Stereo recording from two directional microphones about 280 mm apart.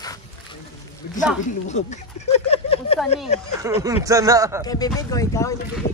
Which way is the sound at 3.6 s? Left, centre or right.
Centre.